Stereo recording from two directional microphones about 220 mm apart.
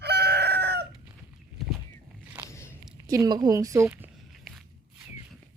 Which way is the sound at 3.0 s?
15° right (ahead or behind).